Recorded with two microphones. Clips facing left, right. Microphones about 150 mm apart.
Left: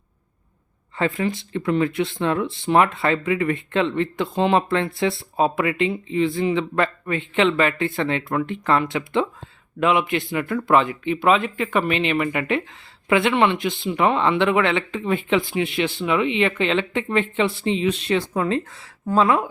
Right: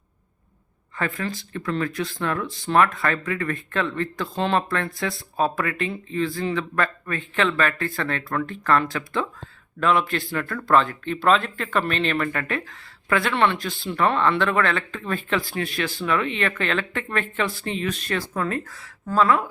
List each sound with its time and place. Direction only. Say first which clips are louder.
0.9 s speech: left 5 dB; 25° left (ahead or behind)